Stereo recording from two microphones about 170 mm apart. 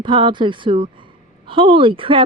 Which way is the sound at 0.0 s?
30° right (ahead or behind).